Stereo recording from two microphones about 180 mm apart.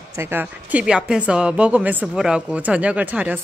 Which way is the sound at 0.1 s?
10° right (ahead or behind).